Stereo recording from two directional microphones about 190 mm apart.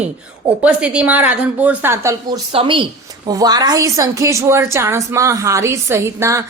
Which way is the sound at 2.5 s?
25° right (ahead or behind).